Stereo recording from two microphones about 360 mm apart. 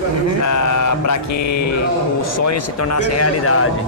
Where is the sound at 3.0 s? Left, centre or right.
Left.